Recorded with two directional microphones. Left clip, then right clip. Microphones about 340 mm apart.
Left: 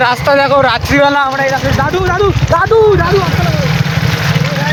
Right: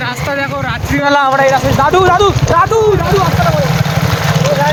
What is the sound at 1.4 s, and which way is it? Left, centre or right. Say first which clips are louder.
Speech: right 3 dB; centre.